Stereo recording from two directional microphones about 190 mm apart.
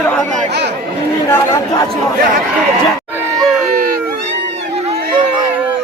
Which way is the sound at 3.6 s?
50° right (ahead or behind).